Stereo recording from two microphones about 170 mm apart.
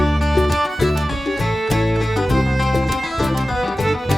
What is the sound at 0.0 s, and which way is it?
Music, centre (ahead or behind).